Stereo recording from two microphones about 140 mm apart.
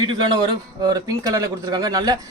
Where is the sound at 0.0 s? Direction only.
30° right (ahead or behind).